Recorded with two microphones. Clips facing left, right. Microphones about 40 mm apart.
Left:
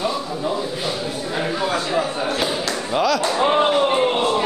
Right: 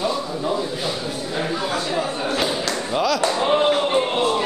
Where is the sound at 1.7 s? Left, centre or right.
Centre.